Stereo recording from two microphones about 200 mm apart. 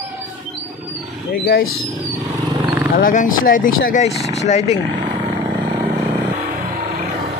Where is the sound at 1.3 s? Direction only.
50° left (ahead or behind).